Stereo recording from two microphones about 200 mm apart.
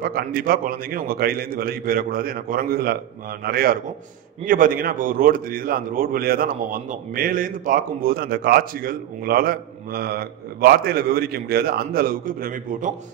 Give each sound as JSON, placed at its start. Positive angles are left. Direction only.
{"t": 0.0, "sound": "a man's voice", "side_deg": -50}